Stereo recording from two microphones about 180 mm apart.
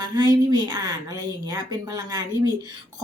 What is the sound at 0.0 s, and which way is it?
Speech, 25° right (ahead or behind).